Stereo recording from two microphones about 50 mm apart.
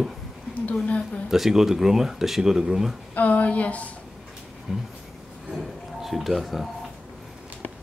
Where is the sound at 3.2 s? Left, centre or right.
Left.